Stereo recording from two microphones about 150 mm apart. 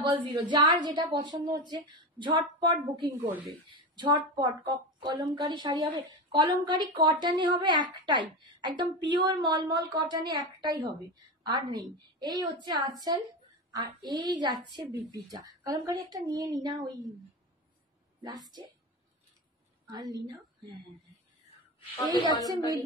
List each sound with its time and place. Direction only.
0.0 s a woman's voice: 30° right (ahead or behind)
19.9 s a woman's voice: 25° right (ahead or behind)
22.0 s a woman's voice: 30° left (ahead or behind)